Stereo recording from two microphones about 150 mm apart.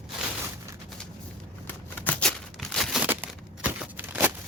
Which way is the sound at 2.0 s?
5° left (ahead or behind).